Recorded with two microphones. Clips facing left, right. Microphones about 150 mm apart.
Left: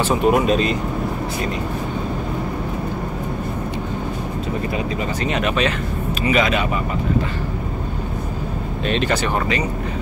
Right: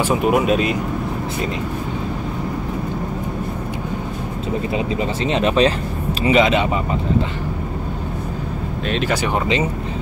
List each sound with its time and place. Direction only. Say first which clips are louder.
0.0 s speech: even; 5° right (ahead or behind)
4.7 s speech: right 2 dB; 25° right (ahead or behind)
8.8 s speech: left 1 dB; 5° right (ahead or behind)